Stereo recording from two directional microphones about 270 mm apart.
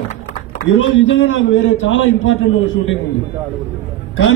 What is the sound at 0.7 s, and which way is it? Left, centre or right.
A man's voice, left.